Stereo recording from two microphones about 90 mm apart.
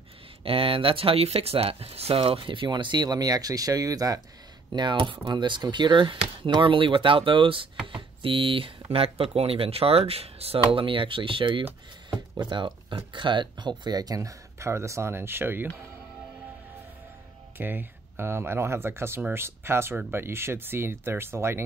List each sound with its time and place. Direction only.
0.4 s speech: 90° right; by 4.2 s 40° right (ahead or behind)
4.7 s speech: 65° right (ahead or behind)
12.1 s speech: 55° right (ahead or behind); by 15.7 s 25° right (ahead or behind)
17.6 s speech: 25° right (ahead or behind)